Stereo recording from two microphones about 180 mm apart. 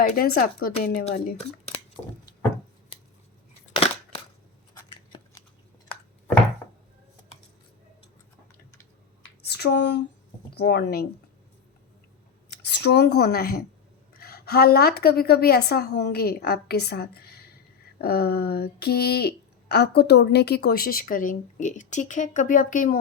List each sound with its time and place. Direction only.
0.0 s speech: 60° left (ahead or behind)
1.0 s speech: 40° left (ahead or behind)
2.9 s scissors: 30° left (ahead or behind)
3.7 s crushing: 30° left (ahead or behind)
4.9 s scissors: 30° left (ahead or behind)
9.4 s a sound: 65° left (ahead or behind)
10.5 s speech: 65° left (ahead or behind)
12.6 s a woman's voice: 70° left (ahead or behind); by 23.0 s 50° left (ahead or behind)